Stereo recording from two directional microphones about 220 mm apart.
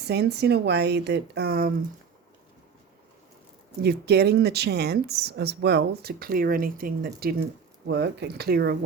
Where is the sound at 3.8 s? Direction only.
45° right (ahead or behind).